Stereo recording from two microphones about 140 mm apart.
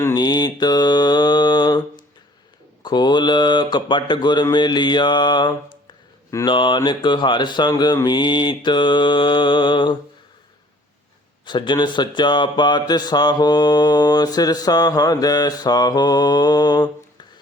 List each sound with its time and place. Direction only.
0.0 s mantra: 30° left (ahead or behind)
2.8 s speech: 30° left (ahead or behind)
11.4 s speech: 35° left (ahead or behind)